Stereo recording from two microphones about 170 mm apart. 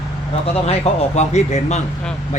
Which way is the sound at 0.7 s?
40° left (ahead or behind).